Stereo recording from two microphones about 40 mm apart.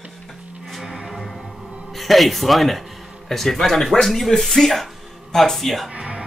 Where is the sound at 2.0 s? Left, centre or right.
Centre.